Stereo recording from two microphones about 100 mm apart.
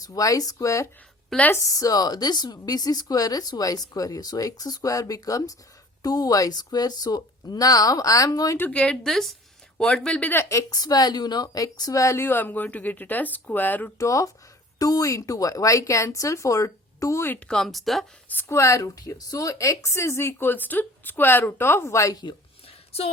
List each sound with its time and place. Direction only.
0.0 s a woman's voice: 35° left (ahead or behind)
8.5 s a woman's voice: 15° left (ahead or behind)
10.5 s a woman's voice: 35° left (ahead or behind); by 13.9 s 20° left (ahead or behind)
14.0 s a woman's voice: 35° left (ahead or behind)
17.5 s speech: 5° left (ahead or behind)
18.3 s a woman's voice: 20° left (ahead or behind)
18.5 s a woman's voice: 30° left (ahead or behind)